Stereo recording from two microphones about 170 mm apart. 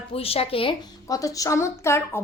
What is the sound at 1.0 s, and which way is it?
A woman's voice, 20° left (ahead or behind).